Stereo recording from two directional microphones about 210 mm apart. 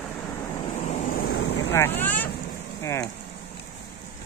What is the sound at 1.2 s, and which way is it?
Vehicle, 60° left (ahead or behind).